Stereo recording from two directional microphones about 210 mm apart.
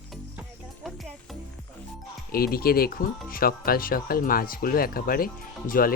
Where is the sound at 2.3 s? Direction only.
45° left (ahead or behind).